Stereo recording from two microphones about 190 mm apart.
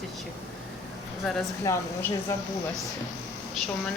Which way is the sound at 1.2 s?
Centre (ahead or behind).